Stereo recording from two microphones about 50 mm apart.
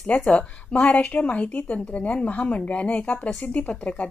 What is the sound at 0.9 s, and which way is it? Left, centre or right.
Speech, left.